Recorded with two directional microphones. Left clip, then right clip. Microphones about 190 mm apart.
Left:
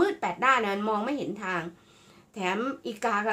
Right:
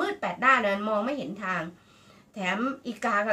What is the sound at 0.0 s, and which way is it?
Speech, 40° left (ahead or behind).